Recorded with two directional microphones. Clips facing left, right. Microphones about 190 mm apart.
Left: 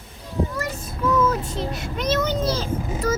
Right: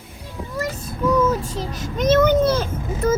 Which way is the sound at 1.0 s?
15° right (ahead or behind).